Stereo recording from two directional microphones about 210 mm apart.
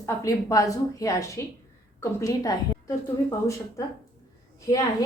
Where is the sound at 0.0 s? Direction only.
15° left (ahead or behind).